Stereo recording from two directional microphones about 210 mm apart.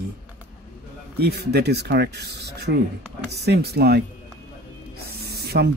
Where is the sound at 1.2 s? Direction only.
50° right (ahead or behind).